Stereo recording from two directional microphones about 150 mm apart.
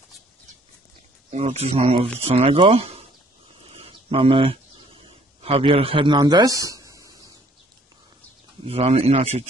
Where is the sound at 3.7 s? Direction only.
40° right (ahead or behind).